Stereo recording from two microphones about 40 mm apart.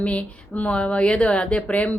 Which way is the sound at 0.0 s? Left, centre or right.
Left.